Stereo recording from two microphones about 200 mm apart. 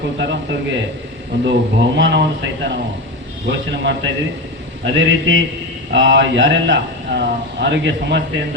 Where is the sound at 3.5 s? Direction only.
60° right (ahead or behind).